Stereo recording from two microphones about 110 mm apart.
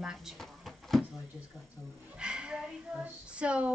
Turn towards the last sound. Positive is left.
turn(degrees=-10)  # may be behind; listen again after turning